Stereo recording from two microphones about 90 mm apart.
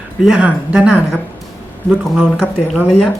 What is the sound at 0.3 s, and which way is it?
Speech, 15° right (ahead or behind).